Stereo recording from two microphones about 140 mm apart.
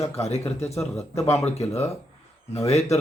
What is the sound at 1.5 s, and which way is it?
Speech, 50° left (ahead or behind).